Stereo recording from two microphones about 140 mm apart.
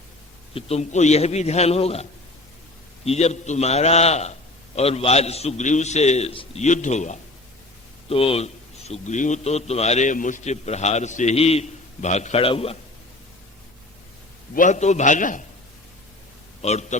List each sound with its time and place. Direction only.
0.5 s a man's voice: 50° left (ahead or behind)
6.6 s a man's voice: 55° left (ahead or behind)
8.1 s a man's voice: 45° left (ahead or behind)
14.5 s a man's voice: 65° left (ahead or behind)
16.6 s a man's voice: 50° left (ahead or behind)